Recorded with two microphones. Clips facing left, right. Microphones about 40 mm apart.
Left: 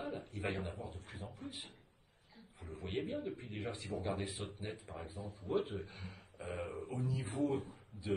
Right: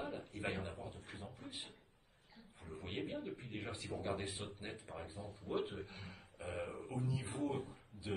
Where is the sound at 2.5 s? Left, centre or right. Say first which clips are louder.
Left 4 dB; centre.